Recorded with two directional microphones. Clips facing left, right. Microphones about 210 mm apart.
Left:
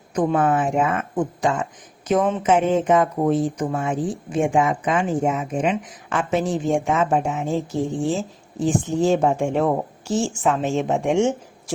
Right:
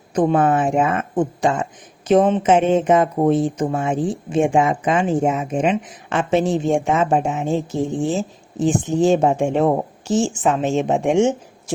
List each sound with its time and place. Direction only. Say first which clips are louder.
0.1 s speech: right 3 dB; 30° right (ahead or behind)